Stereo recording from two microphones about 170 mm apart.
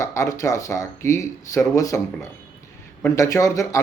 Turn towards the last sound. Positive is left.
turn(degrees=20)  # may be behind; listen again after turning